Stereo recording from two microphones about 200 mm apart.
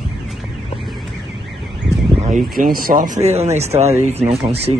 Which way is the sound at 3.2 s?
35° right (ahead or behind).